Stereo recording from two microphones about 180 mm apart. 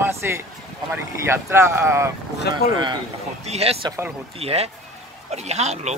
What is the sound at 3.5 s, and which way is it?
Speech, 35° right (ahead or behind).